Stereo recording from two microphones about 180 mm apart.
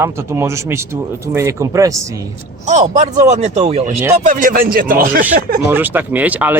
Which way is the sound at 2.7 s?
40° right (ahead or behind).